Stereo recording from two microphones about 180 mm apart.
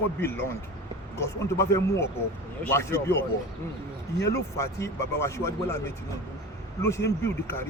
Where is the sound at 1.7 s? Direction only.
15° left (ahead or behind).